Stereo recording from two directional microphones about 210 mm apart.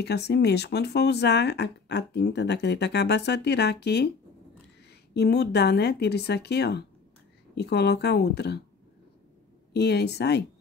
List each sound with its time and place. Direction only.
0.0 s speech: 50° left (ahead or behind)
5.1 s speech: 50° left (ahead or behind)
9.7 s speech: 50° left (ahead or behind)